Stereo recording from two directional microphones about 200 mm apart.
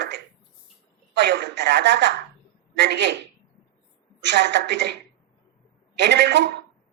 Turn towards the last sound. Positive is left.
turn(degrees=-60)  # may be behind; listen again after turning